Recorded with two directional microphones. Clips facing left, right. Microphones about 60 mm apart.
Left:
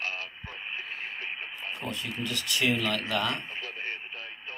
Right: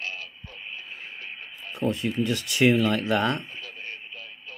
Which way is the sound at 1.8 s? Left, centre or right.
Right.